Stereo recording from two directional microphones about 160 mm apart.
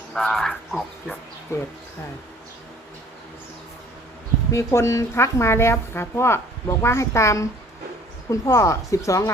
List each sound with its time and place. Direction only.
0.1 s speech: 5° left (ahead or behind)
1.5 s a woman's voice: 20° left (ahead or behind)
4.5 s a woman's voice: 15° left (ahead or behind)